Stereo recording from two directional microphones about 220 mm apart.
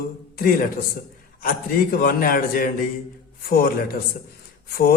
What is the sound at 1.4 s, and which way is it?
A man's voice, 40° left (ahead or behind).